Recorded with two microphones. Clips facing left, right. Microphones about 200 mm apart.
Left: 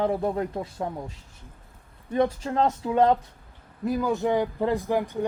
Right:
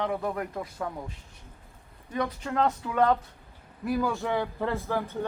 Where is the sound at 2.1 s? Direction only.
30° left (ahead or behind).